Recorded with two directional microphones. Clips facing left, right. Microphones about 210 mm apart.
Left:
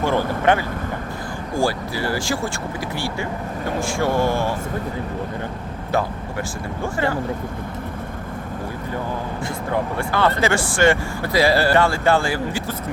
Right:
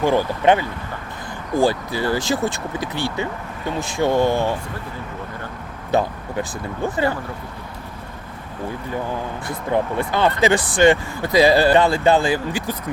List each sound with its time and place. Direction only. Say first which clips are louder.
0.0 s speech: right 2 dB; 15° right (ahead or behind)
5.9 s speech: right 3 dB; 20° right (ahead or behind)
10.0 s speech: even; 20° right (ahead or behind)